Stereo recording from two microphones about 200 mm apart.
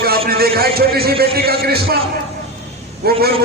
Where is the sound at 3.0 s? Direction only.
50° right (ahead or behind).